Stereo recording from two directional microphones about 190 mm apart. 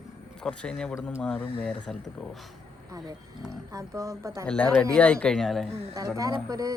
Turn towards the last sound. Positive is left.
turn(degrees=-20)  # may be behind; listen again after turning